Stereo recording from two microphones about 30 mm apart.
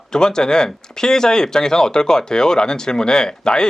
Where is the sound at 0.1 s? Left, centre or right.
Left.